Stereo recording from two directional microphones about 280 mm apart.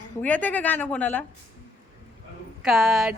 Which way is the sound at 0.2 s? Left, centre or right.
Centre.